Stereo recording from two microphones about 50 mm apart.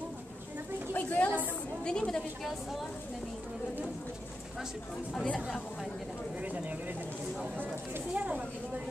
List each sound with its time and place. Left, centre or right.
0.9 s a sound: left
1.9 s a woman's voice: centre
5.1 s speech: left
8.1 s speech: right